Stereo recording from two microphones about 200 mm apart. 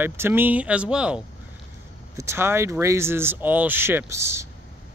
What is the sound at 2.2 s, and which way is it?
Speech, 15° right (ahead or behind).